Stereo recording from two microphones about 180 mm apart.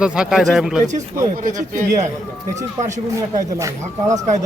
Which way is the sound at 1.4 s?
45° right (ahead or behind).